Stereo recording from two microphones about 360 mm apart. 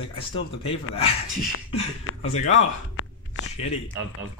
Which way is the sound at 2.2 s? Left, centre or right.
Centre.